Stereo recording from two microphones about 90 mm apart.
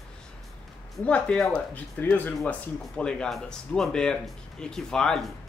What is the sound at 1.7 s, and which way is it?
Speech, 20° left (ahead or behind).